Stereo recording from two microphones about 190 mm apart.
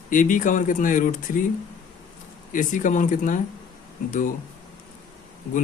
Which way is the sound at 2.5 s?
45° left (ahead or behind).